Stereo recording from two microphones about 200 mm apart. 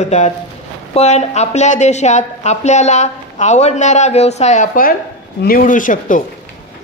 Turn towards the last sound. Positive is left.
turn(degrees=40)  # may be behind; listen again after turning